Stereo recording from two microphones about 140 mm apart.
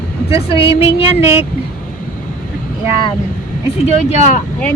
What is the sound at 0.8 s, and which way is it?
Child singing, 45° left (ahead or behind).